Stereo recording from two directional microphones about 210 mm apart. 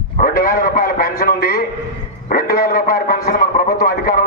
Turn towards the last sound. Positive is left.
turn(degrees=45)  # may be behind; listen again after turning